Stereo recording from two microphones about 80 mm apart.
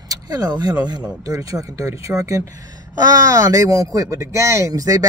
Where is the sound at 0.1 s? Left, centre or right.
Right.